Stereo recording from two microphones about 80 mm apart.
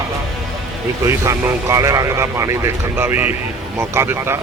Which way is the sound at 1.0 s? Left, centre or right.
Right.